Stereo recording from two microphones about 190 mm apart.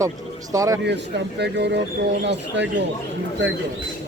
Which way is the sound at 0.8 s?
65° right (ahead or behind).